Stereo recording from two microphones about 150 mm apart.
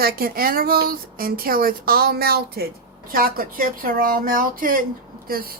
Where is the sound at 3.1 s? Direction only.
75° right (ahead or behind).